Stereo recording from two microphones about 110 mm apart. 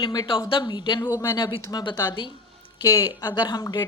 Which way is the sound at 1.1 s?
30° left (ahead or behind).